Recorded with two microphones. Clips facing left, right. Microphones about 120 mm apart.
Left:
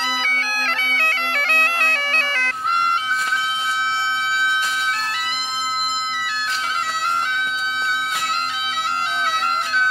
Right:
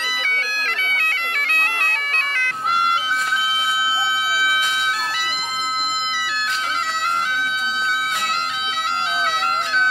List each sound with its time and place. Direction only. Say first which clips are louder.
0.0 s bagpipes: left 3 dB; 30° left (ahead or behind)